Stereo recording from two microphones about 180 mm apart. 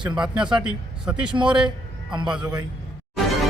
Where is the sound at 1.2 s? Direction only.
25° right (ahead or behind).